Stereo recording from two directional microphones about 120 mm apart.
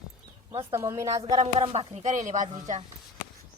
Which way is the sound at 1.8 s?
75° right (ahead or behind).